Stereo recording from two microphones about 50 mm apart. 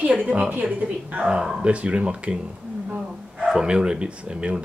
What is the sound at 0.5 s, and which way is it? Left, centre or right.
Speech, right.